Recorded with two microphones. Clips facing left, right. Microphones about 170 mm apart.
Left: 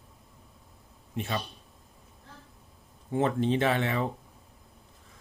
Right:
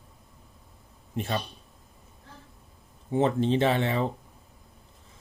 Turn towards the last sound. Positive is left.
turn(degrees=-30)  # may be behind; listen again after turning